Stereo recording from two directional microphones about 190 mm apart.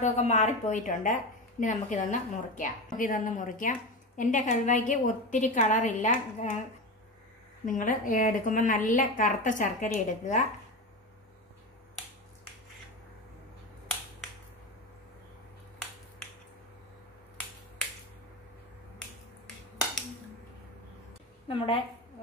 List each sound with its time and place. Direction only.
0.0 s a woman's voice: 35° left (ahead or behind)
7.6 s a woman's voice: 45° left (ahead or behind)
21.5 s a woman's voice: 30° left (ahead or behind)